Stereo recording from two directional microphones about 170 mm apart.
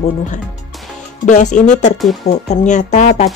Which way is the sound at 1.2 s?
50° left (ahead or behind).